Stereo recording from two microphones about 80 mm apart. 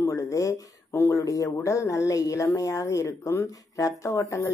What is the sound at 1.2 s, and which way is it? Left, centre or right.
Speech, left.